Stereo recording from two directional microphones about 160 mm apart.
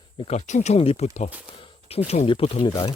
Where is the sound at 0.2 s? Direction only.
45° left (ahead or behind).